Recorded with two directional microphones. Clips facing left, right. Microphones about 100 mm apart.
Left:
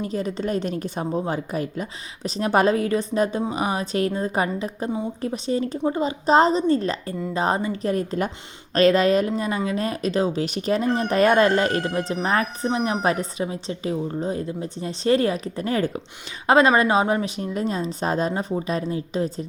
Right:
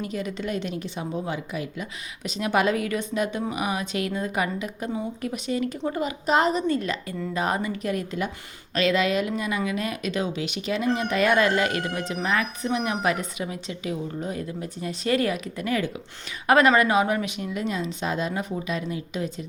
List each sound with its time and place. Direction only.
0.0 s speech: 35° left (ahead or behind)
16.5 s speech: 25° left (ahead or behind)